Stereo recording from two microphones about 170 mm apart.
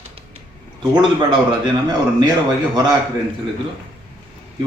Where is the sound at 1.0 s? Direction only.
30° right (ahead or behind).